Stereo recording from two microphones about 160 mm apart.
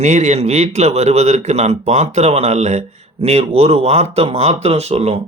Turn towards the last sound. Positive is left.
turn(degrees=-40)  # may be behind; listen again after turning